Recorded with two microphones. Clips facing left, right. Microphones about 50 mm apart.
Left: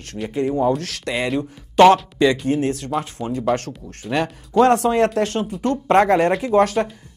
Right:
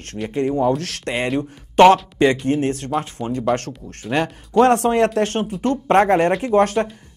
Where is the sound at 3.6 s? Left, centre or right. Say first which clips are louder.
Right 1 dB; right.